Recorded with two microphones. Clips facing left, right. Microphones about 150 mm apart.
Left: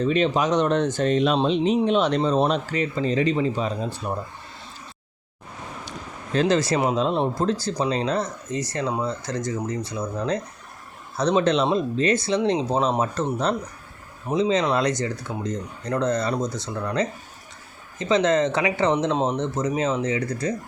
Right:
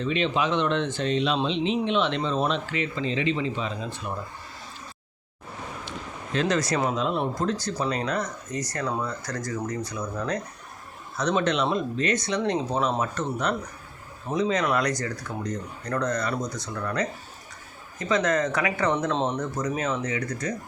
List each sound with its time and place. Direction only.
0.0 s speech: 40° left (ahead or behind)
6.3 s speech: 30° left (ahead or behind)